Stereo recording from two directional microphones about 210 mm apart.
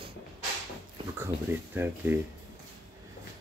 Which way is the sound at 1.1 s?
10° right (ahead or behind).